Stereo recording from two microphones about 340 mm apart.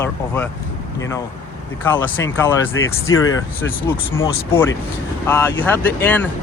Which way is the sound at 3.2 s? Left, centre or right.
Left.